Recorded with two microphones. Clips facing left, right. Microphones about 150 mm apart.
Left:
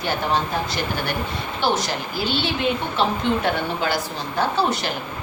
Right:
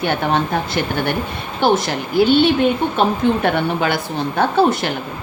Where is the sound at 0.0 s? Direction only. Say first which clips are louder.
Right 4 dB; 60° right (ahead or behind).